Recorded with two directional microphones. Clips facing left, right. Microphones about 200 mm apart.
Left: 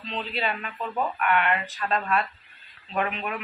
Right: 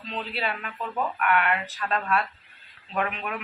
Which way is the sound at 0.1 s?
5° right (ahead or behind).